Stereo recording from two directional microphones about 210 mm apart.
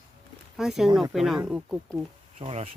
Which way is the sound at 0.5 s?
Centre (ahead or behind).